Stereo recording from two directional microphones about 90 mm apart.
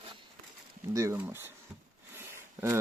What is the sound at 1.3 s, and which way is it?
Speech, 25° right (ahead or behind).